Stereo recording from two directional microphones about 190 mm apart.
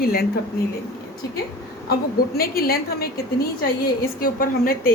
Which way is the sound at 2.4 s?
50° left (ahead or behind).